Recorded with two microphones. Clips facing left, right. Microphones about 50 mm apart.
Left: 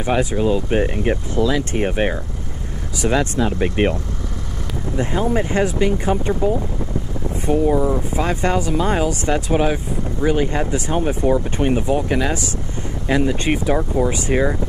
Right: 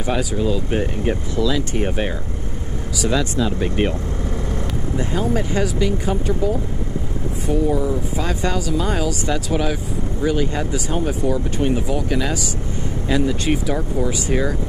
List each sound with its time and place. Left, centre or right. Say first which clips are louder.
0.0 s speech: left 3 dB; left
1.3 s speech: left 2 dB; left
3.0 s speech: left 2 dB; left
4.9 s speech: left 2 dB; left
7.5 s speech: left 3 dB; left